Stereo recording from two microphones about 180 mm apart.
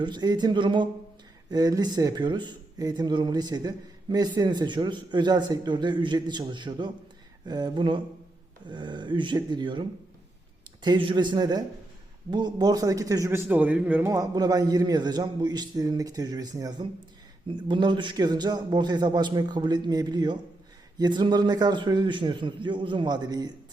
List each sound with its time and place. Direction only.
0.0 s speech: 25° right (ahead or behind)
10.8 s speech: 25° right (ahead or behind)